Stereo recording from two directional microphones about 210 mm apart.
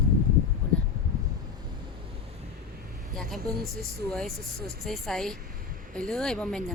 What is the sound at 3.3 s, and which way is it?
Speech, 45° right (ahead or behind).